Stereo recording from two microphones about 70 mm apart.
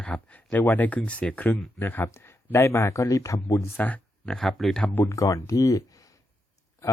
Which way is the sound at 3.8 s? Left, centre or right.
Left.